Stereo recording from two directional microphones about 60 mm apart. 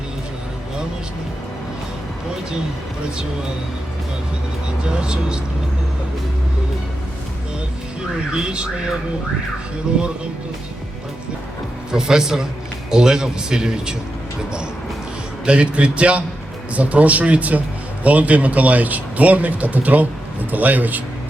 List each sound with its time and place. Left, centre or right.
4.8 s a man's voice: centre
8.3 s a man's voice: centre
11.9 s a man's voice: centre
15.4 s speech: centre